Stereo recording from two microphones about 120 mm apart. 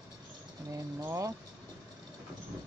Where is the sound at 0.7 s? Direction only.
25° right (ahead or behind).